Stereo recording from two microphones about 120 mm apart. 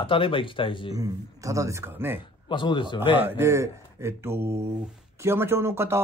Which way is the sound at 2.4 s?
40° left (ahead or behind).